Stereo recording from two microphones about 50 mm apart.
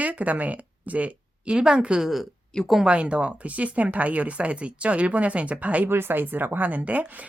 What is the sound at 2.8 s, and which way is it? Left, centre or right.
Speech, right.